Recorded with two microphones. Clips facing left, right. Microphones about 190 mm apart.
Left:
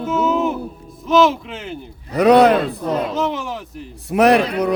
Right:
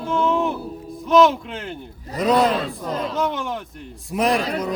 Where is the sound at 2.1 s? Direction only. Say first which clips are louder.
Left 7 dB; 65° left (ahead or behind).